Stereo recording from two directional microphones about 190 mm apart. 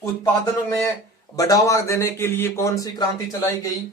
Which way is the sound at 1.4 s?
20° left (ahead or behind).